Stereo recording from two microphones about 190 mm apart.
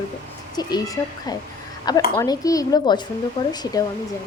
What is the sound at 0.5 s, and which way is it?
Speech, 20° left (ahead or behind).